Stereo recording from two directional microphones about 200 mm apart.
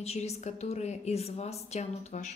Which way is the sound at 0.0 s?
30° left (ahead or behind).